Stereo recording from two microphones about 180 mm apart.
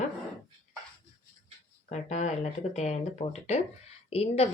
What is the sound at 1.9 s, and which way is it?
Speech, 40° left (ahead or behind).